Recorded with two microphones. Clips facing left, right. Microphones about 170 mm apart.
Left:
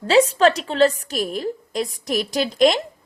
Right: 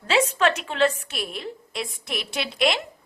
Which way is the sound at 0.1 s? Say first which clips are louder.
Left 6 dB; 35° left (ahead or behind).